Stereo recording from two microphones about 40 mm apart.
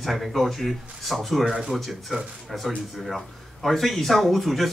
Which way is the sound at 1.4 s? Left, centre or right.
Centre.